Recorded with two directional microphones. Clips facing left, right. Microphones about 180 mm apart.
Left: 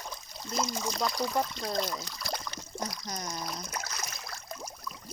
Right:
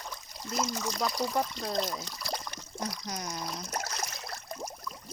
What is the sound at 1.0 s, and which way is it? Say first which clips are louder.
Speech: even; 5° right (ahead or behind).